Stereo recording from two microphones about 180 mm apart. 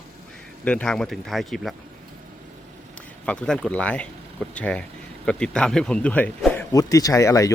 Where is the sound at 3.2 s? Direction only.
5° left (ahead or behind).